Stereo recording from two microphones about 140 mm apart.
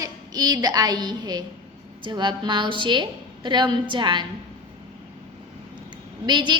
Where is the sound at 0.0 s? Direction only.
25° right (ahead or behind).